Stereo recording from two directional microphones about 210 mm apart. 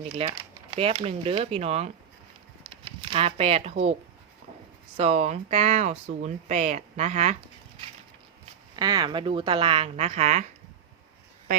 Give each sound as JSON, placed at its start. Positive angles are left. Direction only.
{"t": 0.0, "sound": "speech", "side_deg": -25}
{"t": 4.9, "sound": "speech", "side_deg": -30}
{"t": 8.7, "sound": "speech", "side_deg": -20}